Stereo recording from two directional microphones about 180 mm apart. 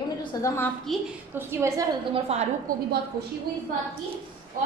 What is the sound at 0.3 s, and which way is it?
Speech, 20° left (ahead or behind).